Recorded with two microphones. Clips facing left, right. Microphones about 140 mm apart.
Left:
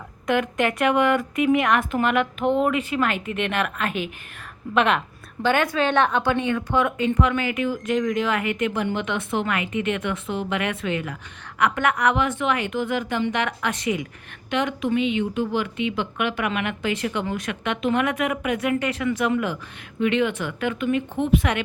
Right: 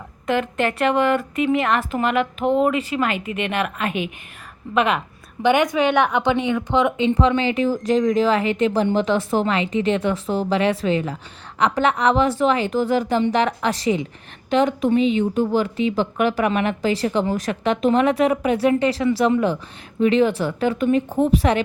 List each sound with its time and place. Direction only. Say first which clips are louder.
0.3 s speech: right 1 dB; centre (ahead or behind)
5.4 s a woman's voice: right 4 dB; 15° right (ahead or behind); by 21.6 s 35° right (ahead or behind)